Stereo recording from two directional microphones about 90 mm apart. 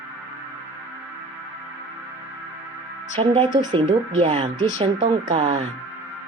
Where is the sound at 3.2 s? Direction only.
90° right.